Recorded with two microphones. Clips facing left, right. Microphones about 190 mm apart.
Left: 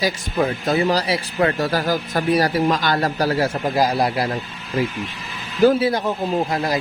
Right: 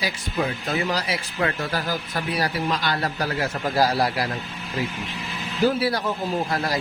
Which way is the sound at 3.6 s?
15° left (ahead or behind).